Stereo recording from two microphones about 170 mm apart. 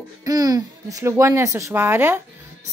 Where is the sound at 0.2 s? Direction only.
20° right (ahead or behind).